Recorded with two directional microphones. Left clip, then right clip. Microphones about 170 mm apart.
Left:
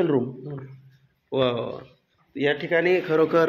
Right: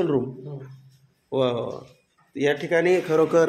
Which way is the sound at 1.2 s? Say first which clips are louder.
Even; 15° right (ahead or behind).